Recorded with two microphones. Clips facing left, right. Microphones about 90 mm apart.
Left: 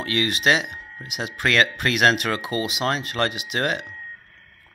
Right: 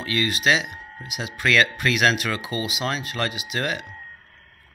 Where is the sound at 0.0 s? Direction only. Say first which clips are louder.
Left 1 dB; 55° left (ahead or behind).